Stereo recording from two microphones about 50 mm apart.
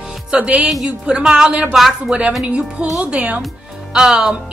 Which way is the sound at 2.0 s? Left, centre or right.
Centre.